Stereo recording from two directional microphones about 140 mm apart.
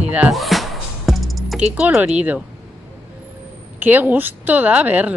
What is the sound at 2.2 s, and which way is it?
Speech, 10° right (ahead or behind).